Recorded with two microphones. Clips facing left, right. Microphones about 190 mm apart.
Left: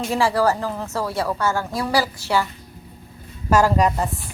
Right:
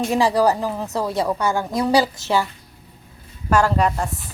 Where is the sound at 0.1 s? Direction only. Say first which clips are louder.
Right 1 dB; 15° right (ahead or behind).